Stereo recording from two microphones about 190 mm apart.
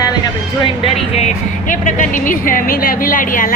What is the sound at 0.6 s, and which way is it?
Speech, 30° left (ahead or behind).